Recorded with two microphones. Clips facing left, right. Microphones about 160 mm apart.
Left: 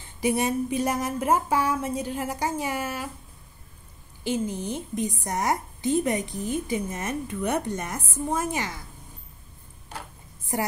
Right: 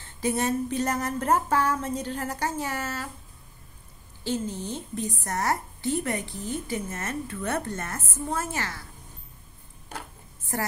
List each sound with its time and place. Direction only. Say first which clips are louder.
0.0 s a woman's voice: left 2 dB; 15° left (ahead or behind)
4.2 s a woman's voice: left 2 dB; 15° left (ahead or behind)
10.5 s a woman's voice: left 2 dB; 15° left (ahead or behind)